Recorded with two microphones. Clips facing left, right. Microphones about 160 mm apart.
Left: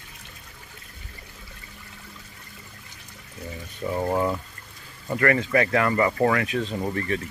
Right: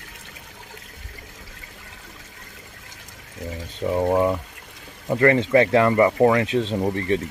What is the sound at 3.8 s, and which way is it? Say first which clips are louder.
Speech: right 5 dB; 20° right (ahead or behind).